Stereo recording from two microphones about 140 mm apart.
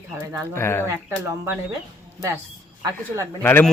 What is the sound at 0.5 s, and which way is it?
Speech, 15° left (ahead or behind).